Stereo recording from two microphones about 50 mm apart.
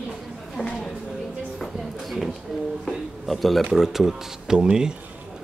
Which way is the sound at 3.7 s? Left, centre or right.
Centre.